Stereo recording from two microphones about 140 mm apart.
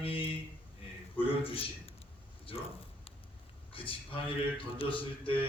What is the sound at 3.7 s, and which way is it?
Speech, 40° left (ahead or behind).